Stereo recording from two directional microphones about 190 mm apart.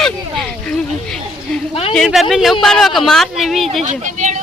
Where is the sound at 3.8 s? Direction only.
40° right (ahead or behind).